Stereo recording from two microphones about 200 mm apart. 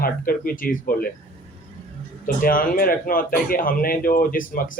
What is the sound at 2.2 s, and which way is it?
Speech, 45° left (ahead or behind).